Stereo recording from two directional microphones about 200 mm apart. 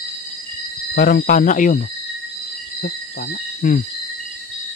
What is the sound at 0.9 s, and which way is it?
Speech, 50° left (ahead or behind).